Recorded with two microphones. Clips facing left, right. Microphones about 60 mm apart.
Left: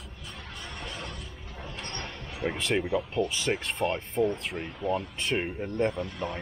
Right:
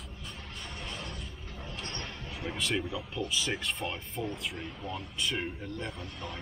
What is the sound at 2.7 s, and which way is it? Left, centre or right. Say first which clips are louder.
Speech: left 7 dB; left.